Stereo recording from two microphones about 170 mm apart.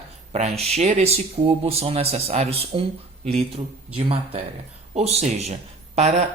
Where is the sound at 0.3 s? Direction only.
40° right (ahead or behind).